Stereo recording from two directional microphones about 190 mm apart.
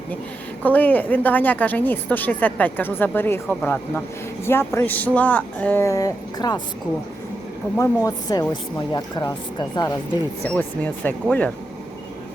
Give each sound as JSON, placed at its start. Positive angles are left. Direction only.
{"t": 0.6, "sound": "a woman's voice", "side_deg": 10}
{"t": 7.8, "sound": "a woman's voice", "side_deg": 20}